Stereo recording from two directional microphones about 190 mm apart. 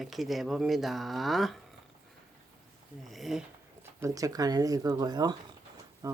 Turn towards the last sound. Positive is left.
turn(degrees=-15)  # may be behind; listen again after turning